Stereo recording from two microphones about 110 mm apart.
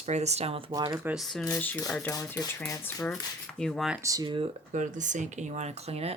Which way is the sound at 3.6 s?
5° left (ahead or behind).